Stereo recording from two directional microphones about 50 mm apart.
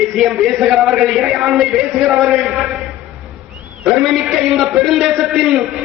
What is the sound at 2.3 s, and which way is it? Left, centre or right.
Speech, centre.